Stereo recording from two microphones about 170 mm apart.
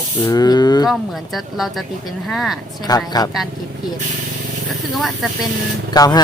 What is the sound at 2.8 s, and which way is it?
Speech, 20° left (ahead or behind).